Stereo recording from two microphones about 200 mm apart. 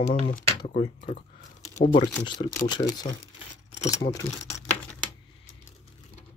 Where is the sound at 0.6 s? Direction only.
25° left (ahead or behind).